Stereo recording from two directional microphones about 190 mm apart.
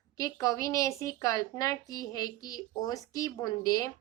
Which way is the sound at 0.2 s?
15° left (ahead or behind).